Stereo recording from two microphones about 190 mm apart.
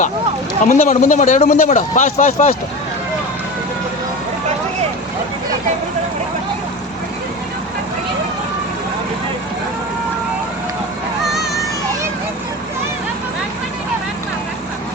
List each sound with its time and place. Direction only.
0.6 s a man's voice: 40° left (ahead or behind)